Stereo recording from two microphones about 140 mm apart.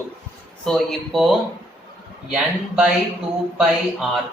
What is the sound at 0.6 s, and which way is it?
Speech, centre (ahead or behind).